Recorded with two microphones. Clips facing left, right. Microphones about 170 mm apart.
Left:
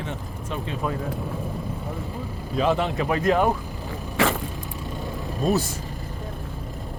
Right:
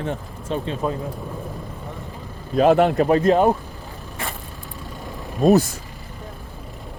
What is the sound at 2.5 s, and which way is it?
Speech, 55° right (ahead or behind).